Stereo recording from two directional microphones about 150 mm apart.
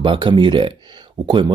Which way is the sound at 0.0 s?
35° right (ahead or behind).